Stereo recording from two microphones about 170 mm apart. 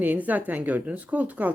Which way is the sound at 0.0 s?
10° right (ahead or behind).